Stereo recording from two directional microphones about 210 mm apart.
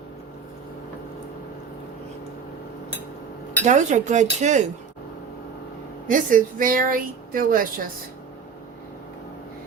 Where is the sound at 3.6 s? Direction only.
35° right (ahead or behind).